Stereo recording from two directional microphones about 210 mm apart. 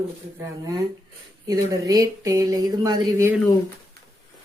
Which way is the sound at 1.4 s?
15° right (ahead or behind).